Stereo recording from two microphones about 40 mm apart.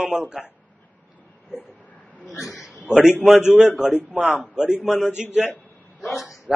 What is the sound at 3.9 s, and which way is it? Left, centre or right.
Speech, right.